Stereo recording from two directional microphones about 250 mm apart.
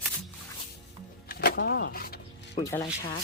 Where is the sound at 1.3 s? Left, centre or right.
Left.